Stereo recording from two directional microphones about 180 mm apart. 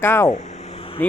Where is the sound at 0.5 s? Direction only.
35° left (ahead or behind).